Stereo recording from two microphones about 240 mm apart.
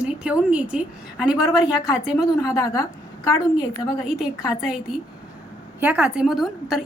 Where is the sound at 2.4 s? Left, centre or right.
Centre.